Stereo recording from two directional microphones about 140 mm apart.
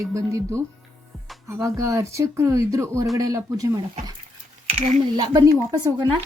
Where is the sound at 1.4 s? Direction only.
20° right (ahead or behind).